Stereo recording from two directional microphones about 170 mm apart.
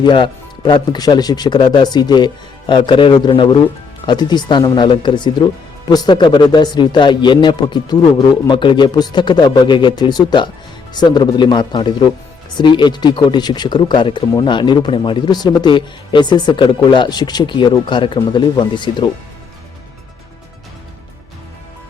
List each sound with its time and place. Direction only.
0.0 s speech: 25° left (ahead or behind)